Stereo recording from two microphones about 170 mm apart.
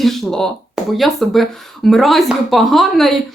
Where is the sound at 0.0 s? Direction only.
Centre (ahead or behind).